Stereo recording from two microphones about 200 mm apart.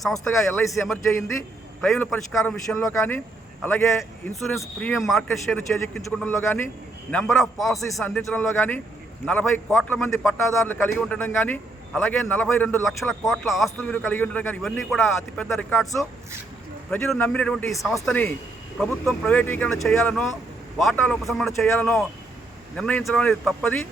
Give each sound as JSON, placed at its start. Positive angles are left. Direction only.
{"t": 0.0, "sound": "speech", "side_deg": 0}
{"t": 2.4, "sound": "a man's voice", "side_deg": 10}
{"t": 4.3, "sound": "a man's voice", "side_deg": 0}
{"t": 10.8, "sound": "a man's voice", "side_deg": 0}
{"t": 13.7, "sound": "a man's voice", "side_deg": 10}
{"t": 22.7, "sound": "speech", "side_deg": 5}